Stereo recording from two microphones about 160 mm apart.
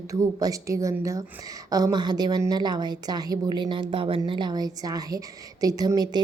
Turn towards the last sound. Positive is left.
turn(degrees=-25)  # may be behind; listen again after turning